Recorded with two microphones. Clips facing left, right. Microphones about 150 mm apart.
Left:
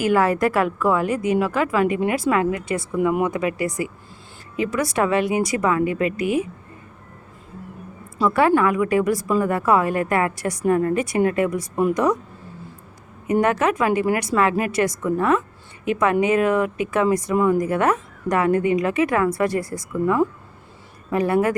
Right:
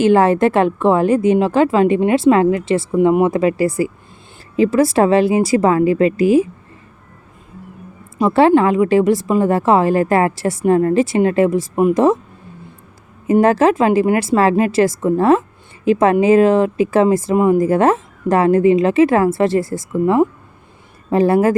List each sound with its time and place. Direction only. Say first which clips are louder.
0.0 s a woman's voice: right 6 dB; 25° right (ahead or behind)
8.2 s a woman's voice: right 6 dB; 25° right (ahead or behind)
13.2 s a woman's voice: right 7 dB; 30° right (ahead or behind)